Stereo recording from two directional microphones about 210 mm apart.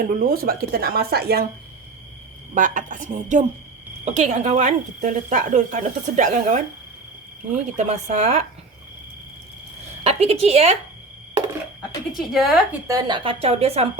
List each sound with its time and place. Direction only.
0.0 s speech: 45° right (ahead or behind)
2.6 s speech: 40° right (ahead or behind)
10.0 s a woman's voice: 30° right (ahead or behind)
12.1 s a woman's voice: centre (ahead or behind)
12.9 s a woman's voice: 20° right (ahead or behind)